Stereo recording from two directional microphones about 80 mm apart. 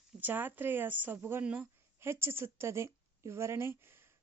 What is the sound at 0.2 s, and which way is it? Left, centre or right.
A woman's voice, right.